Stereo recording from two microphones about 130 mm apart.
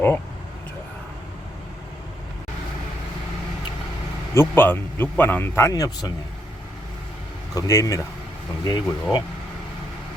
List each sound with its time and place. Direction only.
4.4 s speech: 15° left (ahead or behind)
7.5 s speech: 25° left (ahead or behind)